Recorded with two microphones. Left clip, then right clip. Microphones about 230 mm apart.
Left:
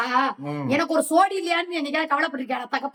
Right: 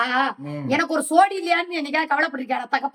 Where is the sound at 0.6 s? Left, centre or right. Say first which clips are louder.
Even; centre.